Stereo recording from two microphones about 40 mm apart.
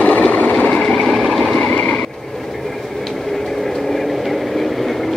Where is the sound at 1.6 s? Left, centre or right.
Left.